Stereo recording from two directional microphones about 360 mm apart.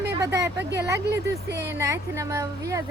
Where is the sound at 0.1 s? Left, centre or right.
Centre.